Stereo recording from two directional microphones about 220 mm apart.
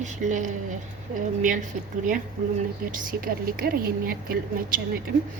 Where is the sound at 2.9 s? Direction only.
40° right (ahead or behind).